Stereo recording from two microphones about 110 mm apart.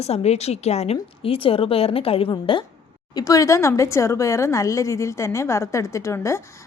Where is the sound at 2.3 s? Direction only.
50° left (ahead or behind).